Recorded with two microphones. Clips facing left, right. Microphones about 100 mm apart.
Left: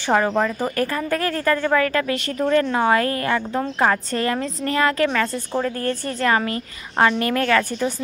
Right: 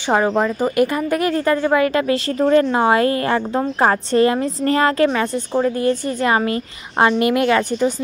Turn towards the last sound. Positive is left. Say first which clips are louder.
# right 3 dB
turn(degrees=-15)  # may be behind; listen again after turning